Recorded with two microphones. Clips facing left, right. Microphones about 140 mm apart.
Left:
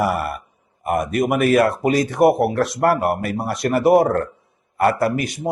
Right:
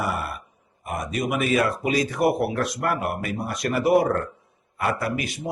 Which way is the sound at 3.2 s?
70° left (ahead or behind).